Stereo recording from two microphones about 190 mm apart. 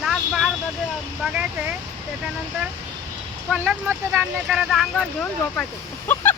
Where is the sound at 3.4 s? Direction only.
10° right (ahead or behind).